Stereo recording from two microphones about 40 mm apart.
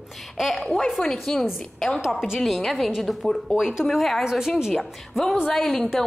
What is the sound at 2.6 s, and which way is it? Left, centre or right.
Speech, centre.